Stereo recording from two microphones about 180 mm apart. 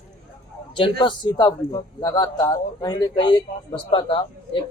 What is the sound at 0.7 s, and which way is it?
A man's voice, 25° left (ahead or behind).